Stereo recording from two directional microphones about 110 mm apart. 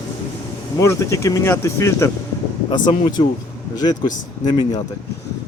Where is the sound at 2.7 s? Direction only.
40° left (ahead or behind).